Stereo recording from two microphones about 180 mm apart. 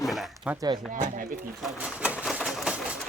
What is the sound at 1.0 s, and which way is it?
Speech, 45° right (ahead or behind).